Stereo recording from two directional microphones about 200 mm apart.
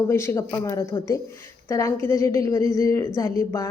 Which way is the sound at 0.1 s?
15° left (ahead or behind).